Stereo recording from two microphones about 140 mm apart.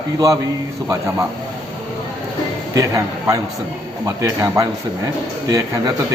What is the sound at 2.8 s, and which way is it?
Speech, 25° right (ahead or behind).